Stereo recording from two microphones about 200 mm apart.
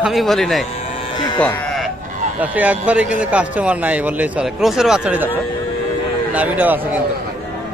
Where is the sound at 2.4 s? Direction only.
10° right (ahead or behind).